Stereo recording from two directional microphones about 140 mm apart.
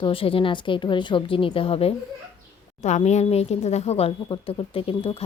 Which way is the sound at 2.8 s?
55° left (ahead or behind).